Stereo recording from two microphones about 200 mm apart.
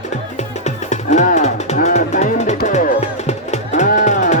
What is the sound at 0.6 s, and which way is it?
Music, 35° left (ahead or behind).